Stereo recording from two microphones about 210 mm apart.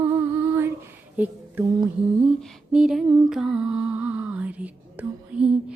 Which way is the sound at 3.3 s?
5° right (ahead or behind).